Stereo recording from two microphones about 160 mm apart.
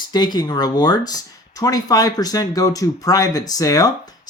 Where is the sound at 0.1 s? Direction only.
25° left (ahead or behind).